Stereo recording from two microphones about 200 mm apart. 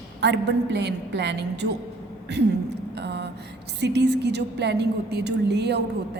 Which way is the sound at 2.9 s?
55° right (ahead or behind).